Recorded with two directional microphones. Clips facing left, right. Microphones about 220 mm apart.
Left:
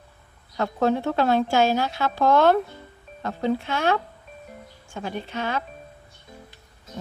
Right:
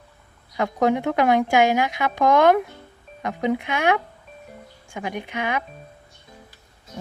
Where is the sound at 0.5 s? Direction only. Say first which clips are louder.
Right 2 dB; 15° right (ahead or behind).